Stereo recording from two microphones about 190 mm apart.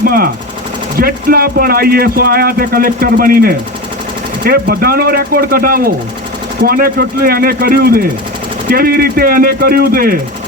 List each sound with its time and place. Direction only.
0.0 s speech: 50° right (ahead or behind)